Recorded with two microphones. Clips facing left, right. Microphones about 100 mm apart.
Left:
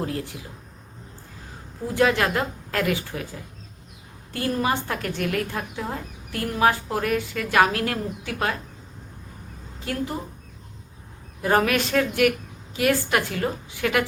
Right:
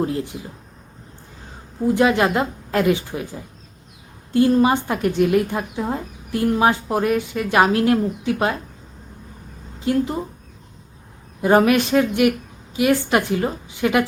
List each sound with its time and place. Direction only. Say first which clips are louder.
0.0 s a woman's voice: right 6 dB; 20° right (ahead or behind)
1.9 s a woman's voice: right 4 dB; 20° right (ahead or behind)
4.3 s a woman's voice: right 9 dB; 20° right (ahead or behind)
9.8 s a woman's voice: right 8 dB; 20° right (ahead or behind)
11.4 s a woman's voice: right 6 dB; 20° right (ahead or behind)